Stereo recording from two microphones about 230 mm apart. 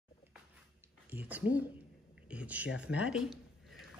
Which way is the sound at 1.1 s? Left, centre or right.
Centre.